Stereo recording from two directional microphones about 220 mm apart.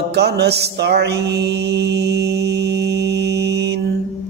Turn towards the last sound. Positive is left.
turn(degrees=-50)  # may be behind; listen again after turning